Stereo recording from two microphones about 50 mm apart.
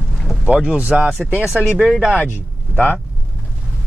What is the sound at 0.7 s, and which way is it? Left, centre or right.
Speech, right.